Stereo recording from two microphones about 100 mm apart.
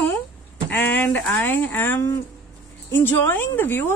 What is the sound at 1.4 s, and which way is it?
Speech, 20° left (ahead or behind).